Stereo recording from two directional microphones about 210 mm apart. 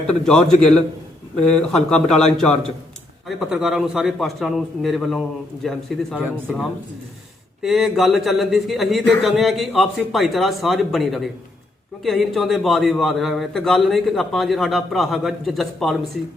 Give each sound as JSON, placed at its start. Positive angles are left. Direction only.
{"t": 0.3, "sound": "a man's voice", "side_deg": 0}
{"t": 7.6, "sound": "a man's voice", "side_deg": 0}